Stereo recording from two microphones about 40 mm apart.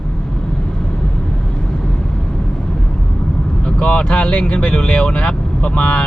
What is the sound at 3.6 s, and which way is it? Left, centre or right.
Speech, left.